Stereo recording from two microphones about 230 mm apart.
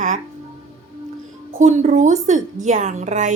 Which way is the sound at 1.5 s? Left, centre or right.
Right.